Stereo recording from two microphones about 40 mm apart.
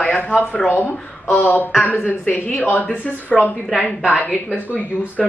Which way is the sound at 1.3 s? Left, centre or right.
Left.